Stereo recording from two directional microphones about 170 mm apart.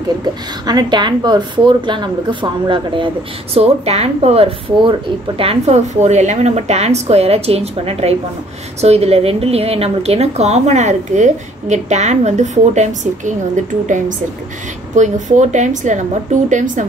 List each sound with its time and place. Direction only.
0.2 s a woman's voice: 25° right (ahead or behind); by 16.8 s 50° right (ahead or behind)